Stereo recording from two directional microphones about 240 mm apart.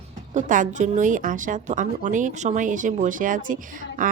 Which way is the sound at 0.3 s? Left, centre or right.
Right.